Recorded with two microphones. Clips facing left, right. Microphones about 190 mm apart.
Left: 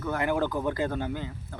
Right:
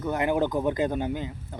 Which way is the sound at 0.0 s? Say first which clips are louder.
Right 2 dB; 20° right (ahead or behind).